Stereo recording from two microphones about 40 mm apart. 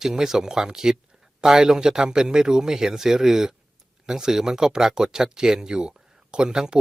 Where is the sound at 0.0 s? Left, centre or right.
Centre.